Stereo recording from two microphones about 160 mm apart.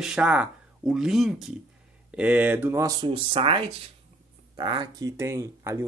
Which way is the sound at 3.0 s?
35° right (ahead or behind).